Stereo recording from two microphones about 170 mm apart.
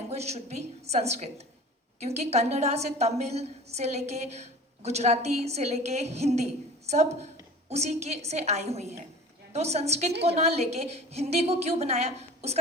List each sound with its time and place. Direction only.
0.1 s a woman's voice: 40° right (ahead or behind)